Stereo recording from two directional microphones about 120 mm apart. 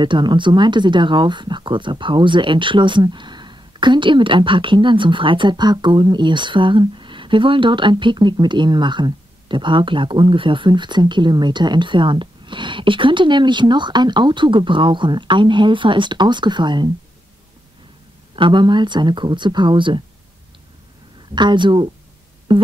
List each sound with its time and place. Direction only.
0.0 s speech: 40° right (ahead or behind)
18.3 s speech: 45° right (ahead or behind)
21.4 s speech: 40° right (ahead or behind)